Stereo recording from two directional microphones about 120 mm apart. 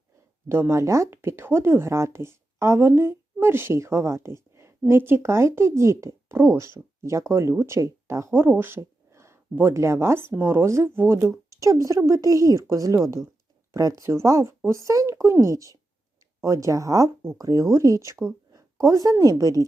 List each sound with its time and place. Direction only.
0.4 s speech: 20° right (ahead or behind)
18.5 s a sound: 25° right (ahead or behind)
19.1 s speech: 30° right (ahead or behind)